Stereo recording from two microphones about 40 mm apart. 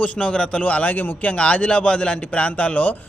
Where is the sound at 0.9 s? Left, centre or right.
Left.